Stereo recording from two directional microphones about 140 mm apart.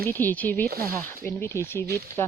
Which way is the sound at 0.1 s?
15° left (ahead or behind).